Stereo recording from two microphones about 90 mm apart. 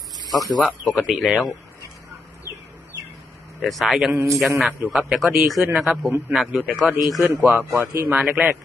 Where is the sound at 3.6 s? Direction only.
Centre (ahead or behind).